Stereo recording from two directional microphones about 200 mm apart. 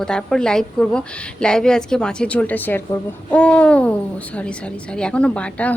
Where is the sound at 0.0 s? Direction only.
5° left (ahead or behind).